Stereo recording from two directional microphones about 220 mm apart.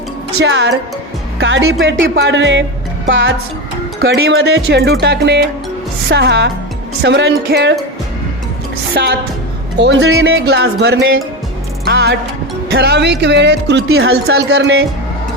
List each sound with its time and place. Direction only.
0.3 s speech: 50° right (ahead or behind)
4.0 s speech: 50° right (ahead or behind)
9.0 s speech: 50° right (ahead or behind)
10.3 s speech: 50° right (ahead or behind)
11.9 s music: 45° right (ahead or behind)
12.7 s speech: 50° right (ahead or behind)
13.8 s speech: 70° right (ahead or behind); by 14.8 s 50° right (ahead or behind)